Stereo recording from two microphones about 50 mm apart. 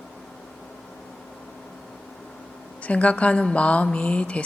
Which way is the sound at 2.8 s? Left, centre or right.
Left.